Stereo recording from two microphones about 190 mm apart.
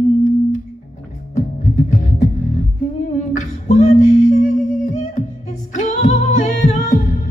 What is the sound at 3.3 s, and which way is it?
Music, 40° left (ahead or behind).